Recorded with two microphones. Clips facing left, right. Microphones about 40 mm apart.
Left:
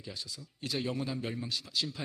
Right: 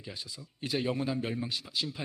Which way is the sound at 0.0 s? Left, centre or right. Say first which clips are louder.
Even; centre.